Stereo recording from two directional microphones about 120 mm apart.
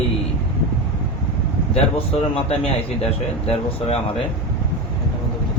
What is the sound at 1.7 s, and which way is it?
A man's voice, 55° left (ahead or behind).